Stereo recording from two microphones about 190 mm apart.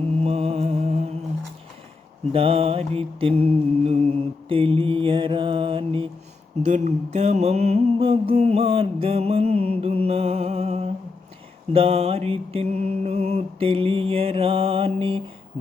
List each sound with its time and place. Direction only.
0.2 s music: 30° right (ahead or behind)
2.3 s mantra: 30° right (ahead or behind)